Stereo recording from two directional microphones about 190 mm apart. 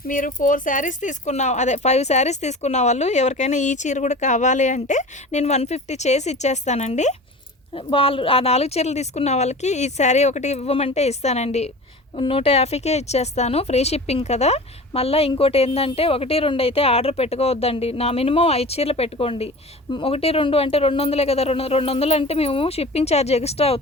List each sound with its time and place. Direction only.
0.1 s speech: 45° left (ahead or behind)